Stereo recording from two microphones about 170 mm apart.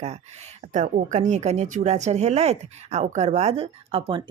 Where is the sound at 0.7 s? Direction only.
45° right (ahead or behind).